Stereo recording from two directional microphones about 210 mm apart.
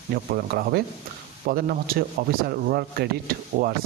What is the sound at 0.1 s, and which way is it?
Speech, 50° right (ahead or behind).